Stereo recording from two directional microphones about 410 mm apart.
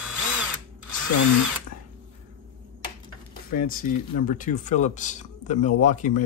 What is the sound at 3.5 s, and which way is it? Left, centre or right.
Speech, left.